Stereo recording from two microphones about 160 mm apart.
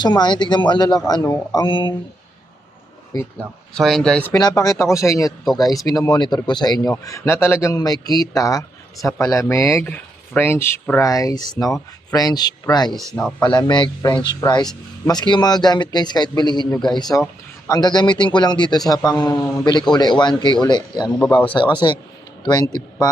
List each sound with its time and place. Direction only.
0.0 s speech: 25° left (ahead or behind)
3.3 s speech: centre (ahead or behind)
4.4 s speech: 25° left (ahead or behind)
12.9 s speech: centre (ahead or behind)
13.4 s speech: 25° left (ahead or behind)